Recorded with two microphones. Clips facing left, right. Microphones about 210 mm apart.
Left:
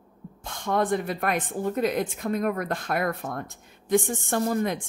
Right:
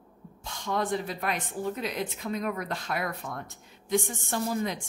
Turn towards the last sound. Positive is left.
turn(degrees=55)  # may be behind; listen again after turning